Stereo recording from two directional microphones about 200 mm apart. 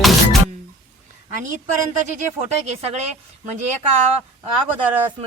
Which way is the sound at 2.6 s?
35° right (ahead or behind).